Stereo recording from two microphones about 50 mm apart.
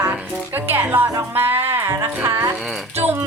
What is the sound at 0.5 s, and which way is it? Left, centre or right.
Speech, right.